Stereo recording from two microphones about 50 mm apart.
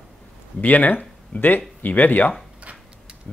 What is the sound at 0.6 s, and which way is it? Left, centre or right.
Speech, left.